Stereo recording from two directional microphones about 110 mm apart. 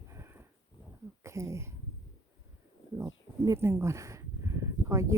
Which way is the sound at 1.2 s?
25° right (ahead or behind).